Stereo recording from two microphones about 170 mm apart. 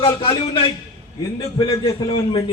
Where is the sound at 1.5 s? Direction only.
20° left (ahead or behind).